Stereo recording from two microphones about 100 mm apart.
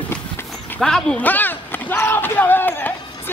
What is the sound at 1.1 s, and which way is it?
Speech, 15° left (ahead or behind).